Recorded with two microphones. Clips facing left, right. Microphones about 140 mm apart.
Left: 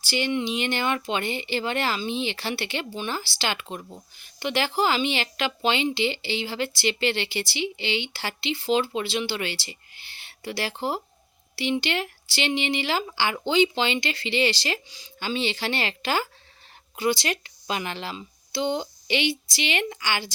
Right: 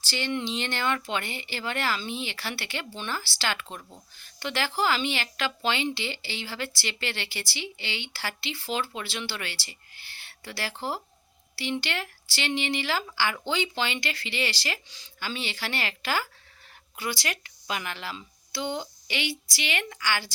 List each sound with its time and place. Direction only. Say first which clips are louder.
0.0 s speech: left 4 dB; 15° left (ahead or behind)